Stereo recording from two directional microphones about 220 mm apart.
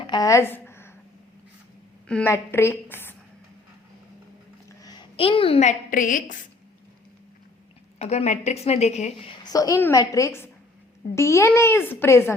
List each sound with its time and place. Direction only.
0.0 s a sound: 20° left (ahead or behind)
2.0 s a child's voice: 10° left (ahead or behind)
4.8 s a woman's voice: 20° left (ahead or behind); by 6.3 s 35° left (ahead or behind)
7.9 s a woman's voice: 30° left (ahead or behind)
9.5 s a child's voice: 15° left (ahead or behind)